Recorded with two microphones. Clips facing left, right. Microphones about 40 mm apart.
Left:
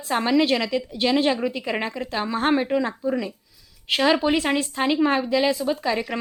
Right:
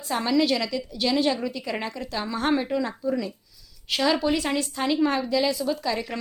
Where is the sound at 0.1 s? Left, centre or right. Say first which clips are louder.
Left 3 dB; left.